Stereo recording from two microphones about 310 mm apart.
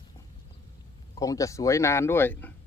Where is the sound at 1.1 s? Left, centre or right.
Centre.